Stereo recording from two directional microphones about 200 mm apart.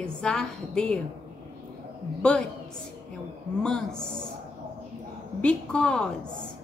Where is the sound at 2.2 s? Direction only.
5° left (ahead or behind).